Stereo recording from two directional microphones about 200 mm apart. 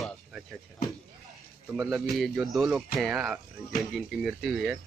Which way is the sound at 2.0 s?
Centre (ahead or behind).